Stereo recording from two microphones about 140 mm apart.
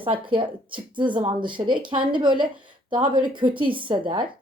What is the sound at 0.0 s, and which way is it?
Speech, 40° right (ahead or behind).